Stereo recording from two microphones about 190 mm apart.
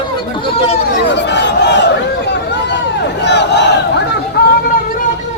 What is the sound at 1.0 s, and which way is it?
Battle cry, 65° left (ahead or behind).